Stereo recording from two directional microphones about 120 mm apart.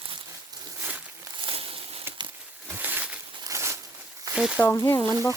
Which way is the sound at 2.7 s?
15° right (ahead or behind).